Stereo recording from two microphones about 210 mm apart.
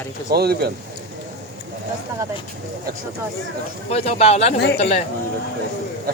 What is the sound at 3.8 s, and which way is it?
Speech, 30° left (ahead or behind).